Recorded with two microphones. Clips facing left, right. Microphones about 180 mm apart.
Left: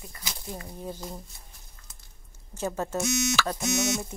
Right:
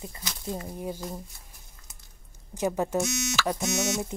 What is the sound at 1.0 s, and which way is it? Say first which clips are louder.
Speech: right 3 dB; 5° left (ahead or behind).